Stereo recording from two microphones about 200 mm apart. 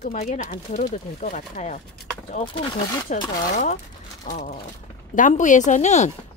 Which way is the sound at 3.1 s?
40° left (ahead or behind).